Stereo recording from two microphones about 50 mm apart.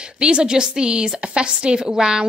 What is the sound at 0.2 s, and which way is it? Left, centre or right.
A woman's voice, centre.